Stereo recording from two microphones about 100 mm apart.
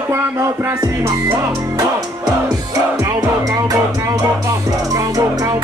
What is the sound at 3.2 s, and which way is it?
Music, 35° right (ahead or behind).